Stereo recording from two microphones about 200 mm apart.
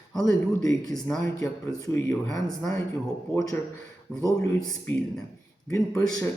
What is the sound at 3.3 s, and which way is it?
Speech, 15° left (ahead or behind).